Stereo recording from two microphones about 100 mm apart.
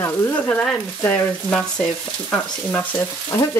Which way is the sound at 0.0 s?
15° left (ahead or behind).